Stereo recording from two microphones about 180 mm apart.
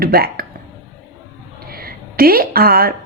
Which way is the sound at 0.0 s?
60° right (ahead or behind).